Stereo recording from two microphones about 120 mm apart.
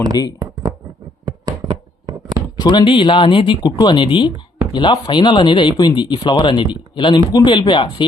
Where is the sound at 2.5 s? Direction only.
35° left (ahead or behind).